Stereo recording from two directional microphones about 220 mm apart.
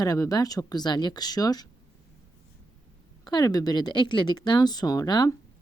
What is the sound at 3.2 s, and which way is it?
Speech, 20° left (ahead or behind).